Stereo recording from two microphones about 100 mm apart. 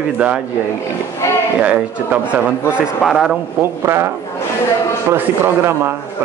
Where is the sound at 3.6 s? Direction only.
25° right (ahead or behind).